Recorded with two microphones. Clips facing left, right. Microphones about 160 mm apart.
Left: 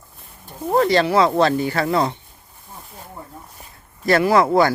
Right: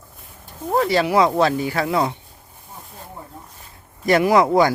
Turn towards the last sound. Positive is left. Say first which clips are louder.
# even
turn(degrees=-15)  # may be behind; listen again after turning